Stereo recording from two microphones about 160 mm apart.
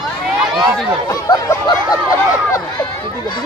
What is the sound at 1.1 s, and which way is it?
Speech, 25° left (ahead or behind).